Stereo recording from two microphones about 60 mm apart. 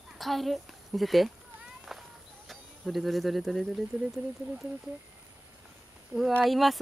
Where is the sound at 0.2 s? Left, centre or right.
Centre.